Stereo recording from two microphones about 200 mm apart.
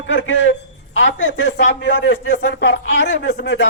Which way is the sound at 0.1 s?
65° left (ahead or behind).